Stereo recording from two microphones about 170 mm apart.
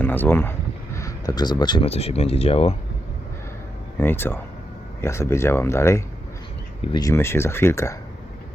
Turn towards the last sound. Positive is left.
turn(degrees=15)  # may be behind; listen again after turning